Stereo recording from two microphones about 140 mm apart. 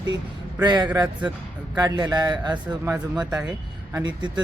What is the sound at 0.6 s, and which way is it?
A man's voice, 30° right (ahead or behind).